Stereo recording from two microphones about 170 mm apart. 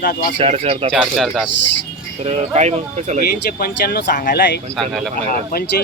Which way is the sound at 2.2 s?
40° right (ahead or behind).